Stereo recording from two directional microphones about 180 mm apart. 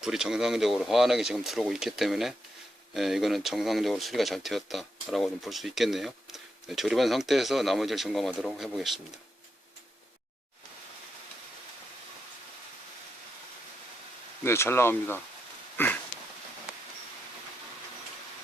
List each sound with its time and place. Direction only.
0.0 s speech: 5° right (ahead or behind)
14.4 s speech: 15° left (ahead or behind)